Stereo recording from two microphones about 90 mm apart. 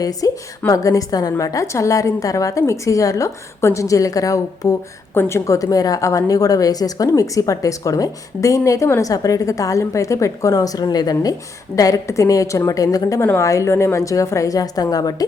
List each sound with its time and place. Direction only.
0.0 s a woman's voice: 45° left (ahead or behind)